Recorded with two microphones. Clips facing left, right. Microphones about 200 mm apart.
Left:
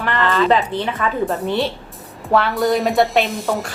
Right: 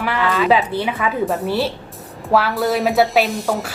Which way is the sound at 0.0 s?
10° right (ahead or behind).